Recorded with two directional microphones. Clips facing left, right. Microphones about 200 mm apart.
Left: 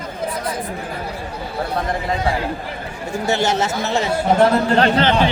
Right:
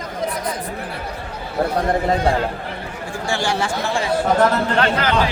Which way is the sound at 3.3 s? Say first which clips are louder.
Left 3 dB; 20° left (ahead or behind).